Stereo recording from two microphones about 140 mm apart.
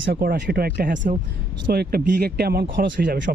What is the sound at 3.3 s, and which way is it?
Speech, 70° right (ahead or behind).